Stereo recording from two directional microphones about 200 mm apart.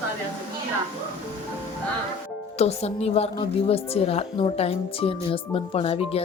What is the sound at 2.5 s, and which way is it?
A woman's voice, 30° left (ahead or behind).